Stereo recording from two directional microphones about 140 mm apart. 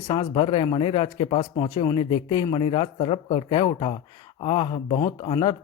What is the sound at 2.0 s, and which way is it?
A man's voice, 40° left (ahead or behind).